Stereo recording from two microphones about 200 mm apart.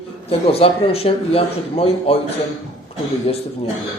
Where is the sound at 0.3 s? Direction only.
30° left (ahead or behind).